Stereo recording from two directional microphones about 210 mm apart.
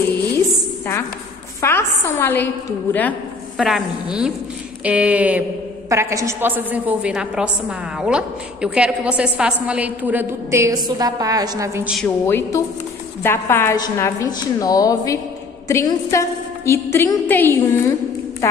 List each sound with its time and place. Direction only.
1.6 s a woman's voice: 10° left (ahead or behind)
3.5 s a woman's voice: centre (ahead or behind)
12.0 s a woman's voice: 10° left (ahead or behind)